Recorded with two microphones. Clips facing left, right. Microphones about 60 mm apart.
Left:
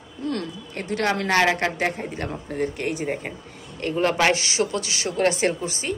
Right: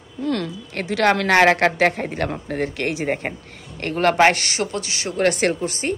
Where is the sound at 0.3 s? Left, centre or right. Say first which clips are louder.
Right 4 dB; right.